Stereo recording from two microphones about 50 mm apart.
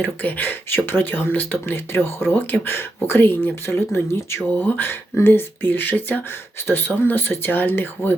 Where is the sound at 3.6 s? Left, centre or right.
Left.